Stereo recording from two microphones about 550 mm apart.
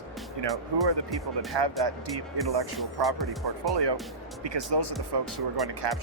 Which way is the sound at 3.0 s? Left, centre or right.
Centre.